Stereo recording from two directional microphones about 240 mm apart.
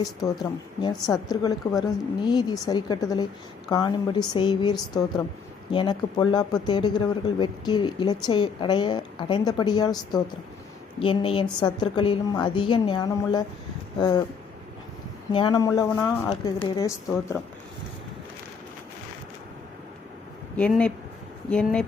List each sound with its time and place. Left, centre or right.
0.2 s a woman's voice: centre
15.3 s speech: centre
16.3 s speech: left
20.6 s speech: centre